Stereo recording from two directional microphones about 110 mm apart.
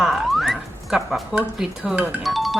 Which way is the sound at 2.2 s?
Centre (ahead or behind).